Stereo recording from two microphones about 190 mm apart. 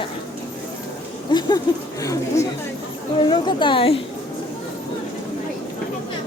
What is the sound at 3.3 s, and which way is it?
Speech, 25° left (ahead or behind).